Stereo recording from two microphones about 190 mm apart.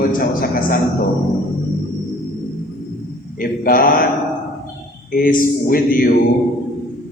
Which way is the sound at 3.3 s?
50° left (ahead or behind).